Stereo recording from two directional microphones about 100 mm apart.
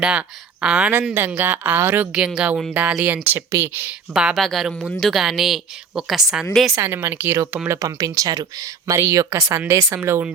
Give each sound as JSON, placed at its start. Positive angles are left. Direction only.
{"t": 0.0, "sound": "a woman's voice", "side_deg": -10}
{"t": 2.1, "sound": "speech", "side_deg": -10}
{"t": 3.2, "sound": "a woman's voice", "side_deg": -25}
{"t": 3.8, "sound": "speech", "side_deg": -10}
{"t": 4.4, "sound": "a woman's voice", "side_deg": 0}
{"t": 6.7, "sound": "a woman's voice", "side_deg": -25}
{"t": 7.8, "sound": "speech", "side_deg": -35}